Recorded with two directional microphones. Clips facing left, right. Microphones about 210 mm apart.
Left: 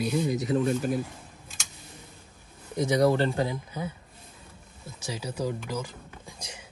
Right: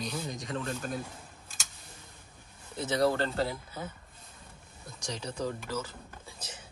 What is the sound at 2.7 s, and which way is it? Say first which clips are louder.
Speech: left 5 dB; 15° left (ahead or behind).